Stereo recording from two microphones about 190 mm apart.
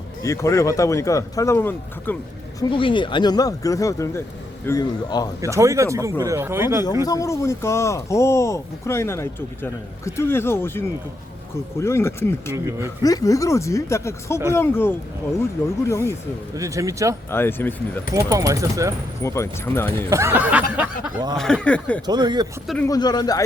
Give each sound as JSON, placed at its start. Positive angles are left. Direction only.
{"t": 0.2, "sound": "speech", "side_deg": 15}
{"t": 2.6, "sound": "speech", "side_deg": 25}
{"t": 5.4, "sound": "speech", "side_deg": -15}
{"t": 7.0, "sound": "speech", "side_deg": 20}
{"t": 16.6, "sound": "speech", "side_deg": -15}
{"t": 17.3, "sound": "speech", "side_deg": 10}
{"t": 18.1, "sound": "speech", "side_deg": -15}
{"t": 19.2, "sound": "speech", "side_deg": 15}
{"t": 20.1, "sound": "speech", "side_deg": -15}
{"t": 21.3, "sound": "speech", "side_deg": 5}
{"t": 22.0, "sound": "speech", "side_deg": -20}
{"t": 22.6, "sound": "speech", "side_deg": 0}
{"t": 22.9, "sound": "speech", "side_deg": 20}